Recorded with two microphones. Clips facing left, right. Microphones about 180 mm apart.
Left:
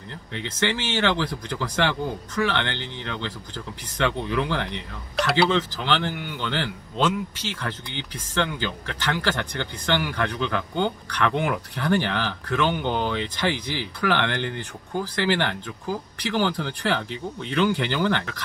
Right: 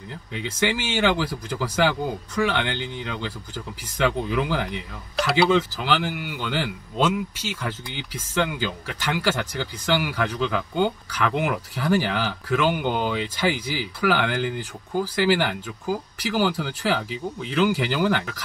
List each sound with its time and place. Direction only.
0.3 s speech: 10° right (ahead or behind)